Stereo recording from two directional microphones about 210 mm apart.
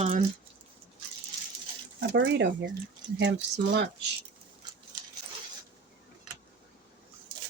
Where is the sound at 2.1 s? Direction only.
60° right (ahead or behind).